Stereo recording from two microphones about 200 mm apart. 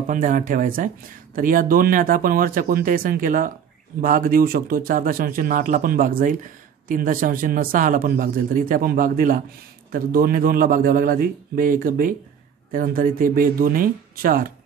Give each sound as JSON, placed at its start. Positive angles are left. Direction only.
{"t": 0.1, "sound": "speech", "side_deg": -40}